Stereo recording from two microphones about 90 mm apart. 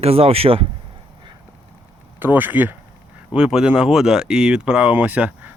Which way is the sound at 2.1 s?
20° right (ahead or behind).